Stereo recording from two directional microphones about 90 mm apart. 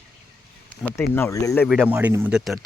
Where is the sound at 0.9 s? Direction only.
25° left (ahead or behind).